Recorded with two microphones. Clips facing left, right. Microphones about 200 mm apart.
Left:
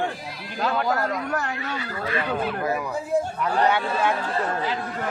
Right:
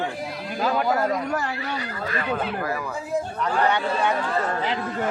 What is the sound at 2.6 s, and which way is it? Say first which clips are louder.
Speech: left 2 dB; 20° left (ahead or behind).